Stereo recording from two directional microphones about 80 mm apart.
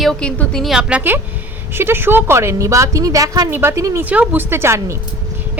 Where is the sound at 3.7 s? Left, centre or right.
Right.